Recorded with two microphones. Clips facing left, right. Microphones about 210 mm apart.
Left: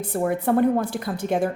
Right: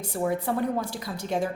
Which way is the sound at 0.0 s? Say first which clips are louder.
Left 4 dB; 55° left (ahead or behind).